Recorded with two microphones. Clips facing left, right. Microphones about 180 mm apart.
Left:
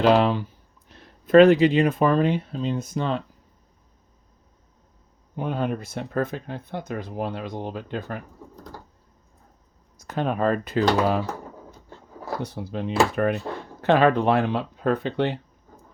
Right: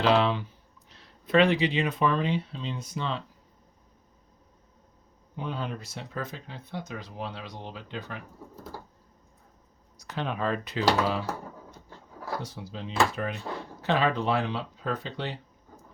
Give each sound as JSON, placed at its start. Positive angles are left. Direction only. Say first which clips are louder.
{"t": 0.0, "sound": "speech", "louder": "left 5 dB", "side_deg": 50}
{"t": 5.4, "sound": "speech", "louder": "left 8 dB", "side_deg": 55}
{"t": 10.0, "sound": "speech", "louder": "left 7 dB", "side_deg": 50}
{"t": 12.4, "sound": "speech", "louder": "left 8 dB", "side_deg": 60}